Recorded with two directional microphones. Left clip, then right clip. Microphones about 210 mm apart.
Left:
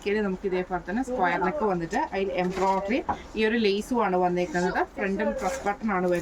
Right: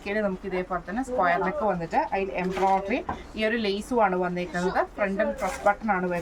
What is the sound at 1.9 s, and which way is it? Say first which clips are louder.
A woman's voice: right 1 dB; 10° right (ahead or behind).